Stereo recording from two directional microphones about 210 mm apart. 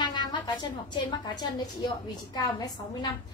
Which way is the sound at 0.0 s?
20° left (ahead or behind).